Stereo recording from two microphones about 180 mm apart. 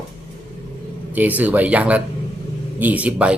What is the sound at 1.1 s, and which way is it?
Speech, 10° right (ahead or behind).